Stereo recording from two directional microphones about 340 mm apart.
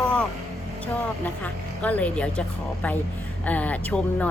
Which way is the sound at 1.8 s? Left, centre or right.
Centre.